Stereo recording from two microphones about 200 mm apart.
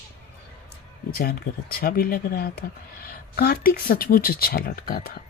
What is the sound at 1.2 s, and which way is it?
Speech, 50° left (ahead or behind).